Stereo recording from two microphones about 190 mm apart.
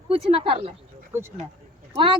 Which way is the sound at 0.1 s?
30° right (ahead or behind).